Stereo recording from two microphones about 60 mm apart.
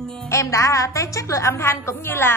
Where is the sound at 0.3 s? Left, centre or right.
Left.